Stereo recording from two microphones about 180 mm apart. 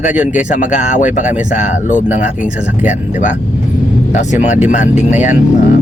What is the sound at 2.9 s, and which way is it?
Speech, 45° left (ahead or behind).